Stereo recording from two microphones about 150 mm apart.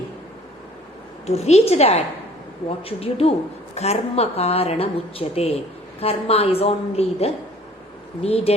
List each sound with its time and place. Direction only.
1.4 s a woman's voice: 45° left (ahead or behind)